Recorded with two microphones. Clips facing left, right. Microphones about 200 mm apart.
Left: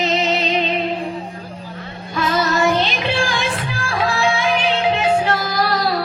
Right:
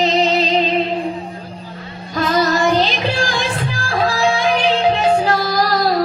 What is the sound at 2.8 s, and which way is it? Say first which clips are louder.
Music: right 2 dB; 40° right (ahead or behind).